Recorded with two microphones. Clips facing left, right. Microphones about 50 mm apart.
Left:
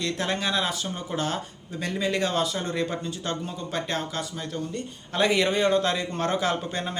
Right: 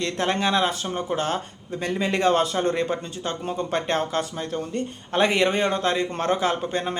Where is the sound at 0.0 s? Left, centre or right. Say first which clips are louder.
Right 4 dB; right.